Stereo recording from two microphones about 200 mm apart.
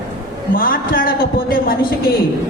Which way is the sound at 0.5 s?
45° left (ahead or behind).